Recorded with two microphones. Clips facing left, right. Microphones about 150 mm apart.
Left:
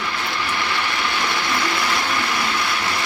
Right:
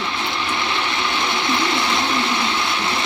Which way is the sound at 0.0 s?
20° right (ahead or behind).